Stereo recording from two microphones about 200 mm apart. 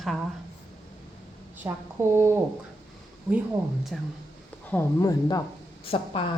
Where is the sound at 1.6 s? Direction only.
10° right (ahead or behind).